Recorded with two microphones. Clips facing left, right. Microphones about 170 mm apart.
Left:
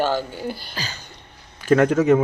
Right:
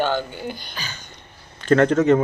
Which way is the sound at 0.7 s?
35° left (ahead or behind).